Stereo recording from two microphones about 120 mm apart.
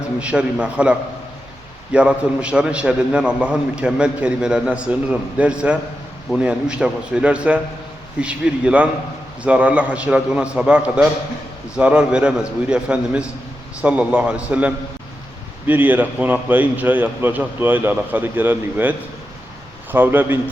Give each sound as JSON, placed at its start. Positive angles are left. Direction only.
{"t": 0.2, "sound": "a man's voice", "side_deg": -10}